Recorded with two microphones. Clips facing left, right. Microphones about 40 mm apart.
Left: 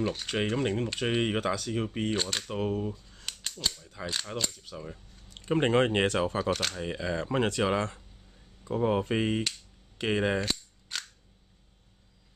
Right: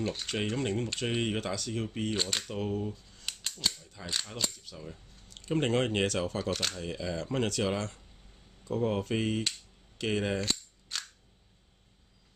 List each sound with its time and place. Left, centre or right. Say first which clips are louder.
0.1 s speech: left 2 dB; centre
0.4 s speech: left 3 dB; centre
2.4 s speech: left 3 dB; left
3.3 s scissors: even; centre
3.8 s mechanisms: left 6 dB; centre
4.3 s speech: left 3 dB; centre
6.5 s speech: left 3 dB; centre
6.8 s speech: left 3 dB; left
10.4 s cap gun: left 1 dB; centre